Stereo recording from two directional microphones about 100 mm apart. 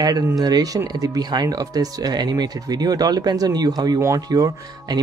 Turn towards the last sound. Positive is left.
turn(degrees=-40)  # may be behind; listen again after turning